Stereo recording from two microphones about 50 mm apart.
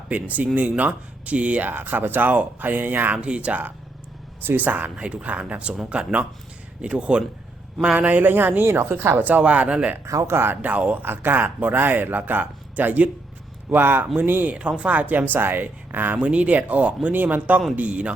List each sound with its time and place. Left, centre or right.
0.1 s speech: right
3.2 s speech: right
4.4 s speech: right
4.9 s speech: right
7.9 s speech: right
9.1 s speech: right
10.1 s speech: right
10.3 s speech: right
10.6 s speech: right
11.0 s speech: right
14.5 s speech: right
16.1 s speech: right